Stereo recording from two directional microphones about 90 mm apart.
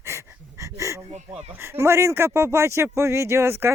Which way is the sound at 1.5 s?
25° right (ahead or behind).